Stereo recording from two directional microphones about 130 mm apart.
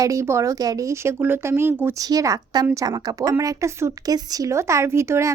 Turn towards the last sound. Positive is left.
turn(degrees=-20)  # may be behind; listen again after turning